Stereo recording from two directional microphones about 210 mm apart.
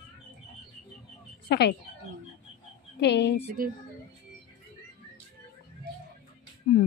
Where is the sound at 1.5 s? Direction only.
50° left (ahead or behind).